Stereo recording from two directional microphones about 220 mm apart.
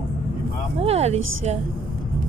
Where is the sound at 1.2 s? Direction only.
65° right (ahead or behind).